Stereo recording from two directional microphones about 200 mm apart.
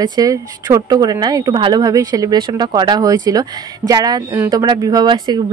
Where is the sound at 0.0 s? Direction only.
20° right (ahead or behind).